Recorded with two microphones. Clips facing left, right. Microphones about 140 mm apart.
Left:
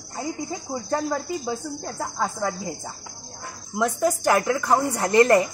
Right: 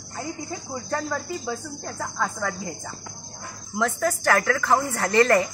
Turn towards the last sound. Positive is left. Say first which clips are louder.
# left 2 dB
turn(degrees=15)  # may be behind; listen again after turning